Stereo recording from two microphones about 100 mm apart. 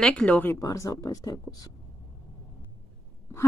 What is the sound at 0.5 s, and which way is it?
Speech, 35° left (ahead or behind).